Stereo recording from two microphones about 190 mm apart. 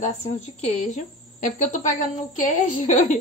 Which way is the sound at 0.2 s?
40° left (ahead or behind).